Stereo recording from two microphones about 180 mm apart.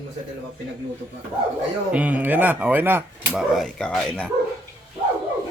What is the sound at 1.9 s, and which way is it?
Speech, 10° right (ahead or behind).